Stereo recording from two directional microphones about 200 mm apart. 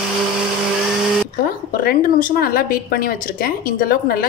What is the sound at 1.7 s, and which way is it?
A woman's voice, 45° left (ahead or behind).